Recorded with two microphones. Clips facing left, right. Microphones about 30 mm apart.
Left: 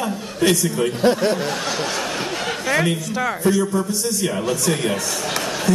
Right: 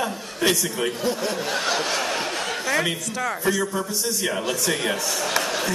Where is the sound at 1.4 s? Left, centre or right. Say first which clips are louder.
Left 1 dB; centre.